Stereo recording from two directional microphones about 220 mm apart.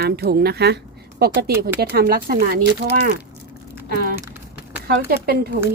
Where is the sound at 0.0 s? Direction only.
45° right (ahead or behind).